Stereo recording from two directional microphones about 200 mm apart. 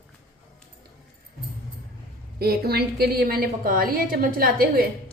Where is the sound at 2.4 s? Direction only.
50° right (ahead or behind).